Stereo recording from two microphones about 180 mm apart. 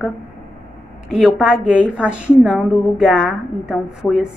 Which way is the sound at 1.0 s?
Centre (ahead or behind).